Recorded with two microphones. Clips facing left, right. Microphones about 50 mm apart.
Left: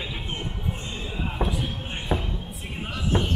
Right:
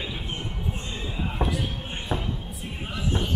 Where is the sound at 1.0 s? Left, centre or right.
Centre.